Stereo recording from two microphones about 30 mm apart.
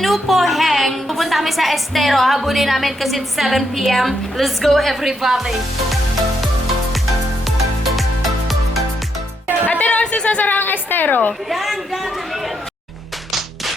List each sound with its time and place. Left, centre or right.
0.0 s a woman's voice: centre
4.9 s speech: centre
7.4 s music: centre
9.6 s music: left
10.0 s a sound: left
10.4 s a woman's voice: left
11.4 s a man's voice: centre